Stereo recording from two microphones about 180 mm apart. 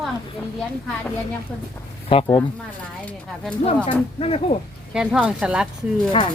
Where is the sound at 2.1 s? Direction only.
30° left (ahead or behind).